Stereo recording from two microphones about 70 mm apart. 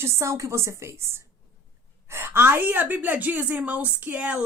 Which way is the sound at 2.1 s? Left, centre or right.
Right.